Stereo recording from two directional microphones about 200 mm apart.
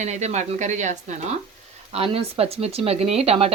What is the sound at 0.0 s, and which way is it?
A woman's voice, 35° right (ahead or behind).